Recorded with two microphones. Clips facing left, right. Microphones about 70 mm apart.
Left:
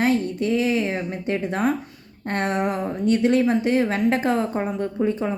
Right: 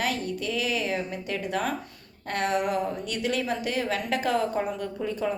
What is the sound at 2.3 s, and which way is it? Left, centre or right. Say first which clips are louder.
A woman's voice: left 2 dB; left.